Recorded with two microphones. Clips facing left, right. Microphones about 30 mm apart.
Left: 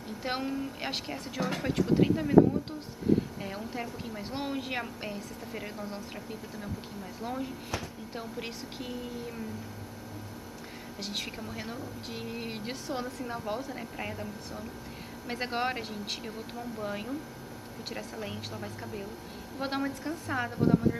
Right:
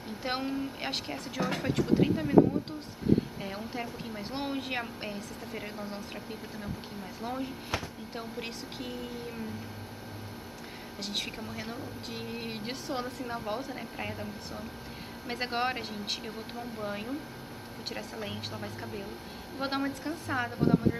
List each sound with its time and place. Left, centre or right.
0.2 s speech: centre
3.4 s a woman's voice: centre
7.2 s a woman's voice: centre
11.0 s a woman's voice: centre; by 16.8 s right
16.8 s a woman's voice: centre